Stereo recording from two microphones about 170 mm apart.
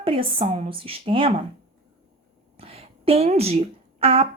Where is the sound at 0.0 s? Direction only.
30° right (ahead or behind).